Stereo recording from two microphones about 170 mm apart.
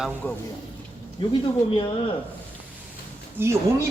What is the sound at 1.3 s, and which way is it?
Speech, 30° left (ahead or behind).